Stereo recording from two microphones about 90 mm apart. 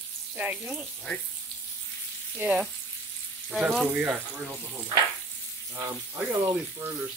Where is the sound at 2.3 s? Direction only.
5° right (ahead or behind).